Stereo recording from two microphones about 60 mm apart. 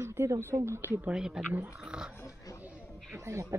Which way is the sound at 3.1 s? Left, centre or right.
Right.